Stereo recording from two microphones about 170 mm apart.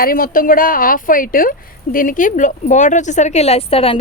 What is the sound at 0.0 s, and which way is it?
A woman's voice, 55° left (ahead or behind).